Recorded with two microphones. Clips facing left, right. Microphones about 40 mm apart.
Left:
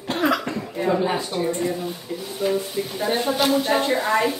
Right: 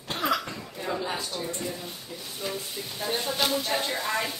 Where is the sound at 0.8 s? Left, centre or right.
Left.